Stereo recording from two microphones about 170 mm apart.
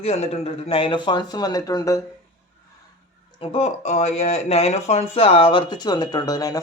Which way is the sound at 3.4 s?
40° left (ahead or behind).